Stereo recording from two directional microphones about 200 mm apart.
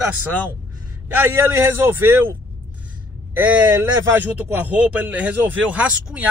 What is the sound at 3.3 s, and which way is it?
A man's voice, 10° right (ahead or behind).